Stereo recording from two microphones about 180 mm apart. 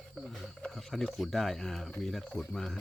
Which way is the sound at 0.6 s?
Centre (ahead or behind).